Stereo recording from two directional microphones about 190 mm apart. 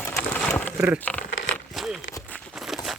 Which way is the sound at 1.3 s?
85° left.